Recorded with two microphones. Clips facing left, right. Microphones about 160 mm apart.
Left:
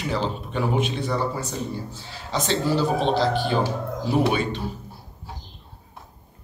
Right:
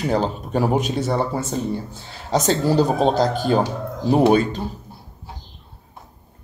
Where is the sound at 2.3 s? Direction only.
45° right (ahead or behind).